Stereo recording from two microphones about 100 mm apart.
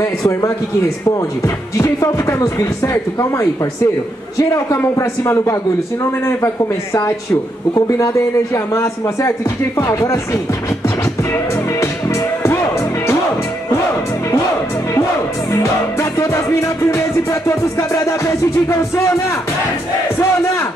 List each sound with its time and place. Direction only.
0.0 s music: 35° left (ahead or behind)
6.2 s speech: 30° left (ahead or behind)
7.7 s music: 30° left (ahead or behind)
8.7 s speech: 30° left (ahead or behind)
11.8 s music: 30° left (ahead or behind)
15.5 s music: 30° left (ahead or behind)